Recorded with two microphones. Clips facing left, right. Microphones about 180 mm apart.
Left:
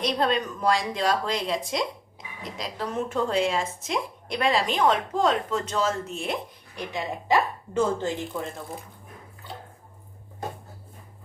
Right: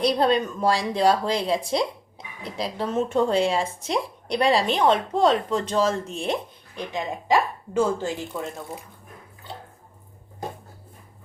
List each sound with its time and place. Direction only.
0.0 s speech: 35° right (ahead or behind)
6.7 s speech: 15° right (ahead or behind)